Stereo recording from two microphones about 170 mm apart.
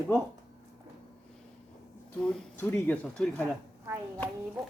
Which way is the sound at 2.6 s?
10° left (ahead or behind).